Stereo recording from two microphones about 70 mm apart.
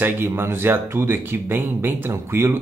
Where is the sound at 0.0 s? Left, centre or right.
Right.